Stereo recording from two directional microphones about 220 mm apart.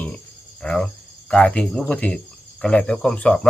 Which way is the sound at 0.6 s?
5° left (ahead or behind).